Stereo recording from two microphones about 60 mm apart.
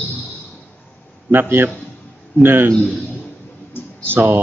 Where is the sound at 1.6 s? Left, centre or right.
Right.